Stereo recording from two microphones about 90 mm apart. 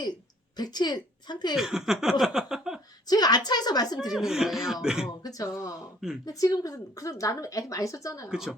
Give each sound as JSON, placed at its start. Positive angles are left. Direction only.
{"t": 0.5, "sound": "a woman's voice", "side_deg": 50}
{"t": 1.5, "sound": "laughter", "side_deg": -5}
{"t": 3.1, "sound": "a woman's voice", "side_deg": 50}
{"t": 4.1, "sound": "laughter", "side_deg": -5}
{"t": 5.2, "sound": "a woman's voice", "side_deg": 40}
{"t": 8.3, "sound": "speech", "side_deg": -10}